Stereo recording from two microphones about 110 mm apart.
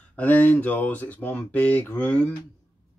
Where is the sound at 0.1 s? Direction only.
15° left (ahead or behind).